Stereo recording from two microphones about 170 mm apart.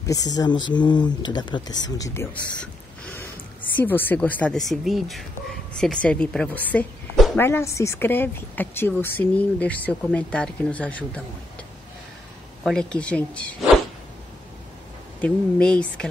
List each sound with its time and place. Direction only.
0.0 s speech: 20° left (ahead or behind)
2.6 s a sound: 10° left (ahead or behind)
3.7 s a woman's voice: 10° left (ahead or behind)
12.6 s speech: 5° left (ahead or behind)
15.2 s a woman's voice: 5° left (ahead or behind)